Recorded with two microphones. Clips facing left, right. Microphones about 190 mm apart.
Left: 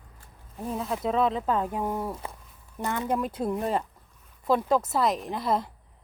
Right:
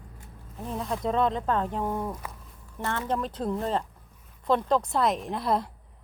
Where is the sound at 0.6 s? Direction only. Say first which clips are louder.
Left 1 dB; 5° left (ahead or behind).